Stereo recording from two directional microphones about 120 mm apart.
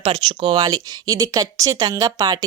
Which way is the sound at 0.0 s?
45° right (ahead or behind).